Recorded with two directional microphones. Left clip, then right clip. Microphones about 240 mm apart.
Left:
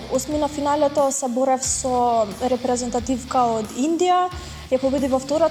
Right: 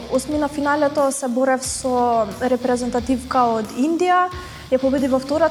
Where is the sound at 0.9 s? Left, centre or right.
Left.